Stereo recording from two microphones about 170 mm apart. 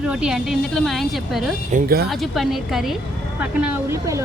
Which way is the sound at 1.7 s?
60° right (ahead or behind).